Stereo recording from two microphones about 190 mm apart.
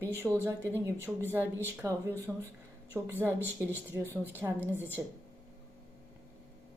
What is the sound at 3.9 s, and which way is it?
Speech, 15° right (ahead or behind).